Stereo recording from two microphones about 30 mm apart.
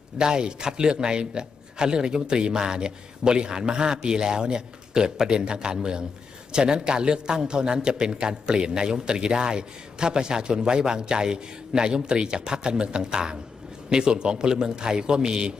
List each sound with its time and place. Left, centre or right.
0.2 s a man's voice: right